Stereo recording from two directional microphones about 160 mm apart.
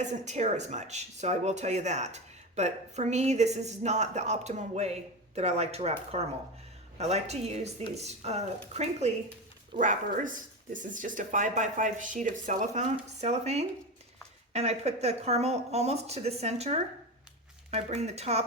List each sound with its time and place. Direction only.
0.0 s speech: 45° right (ahead or behind)
9.7 s speech: 55° right (ahead or behind)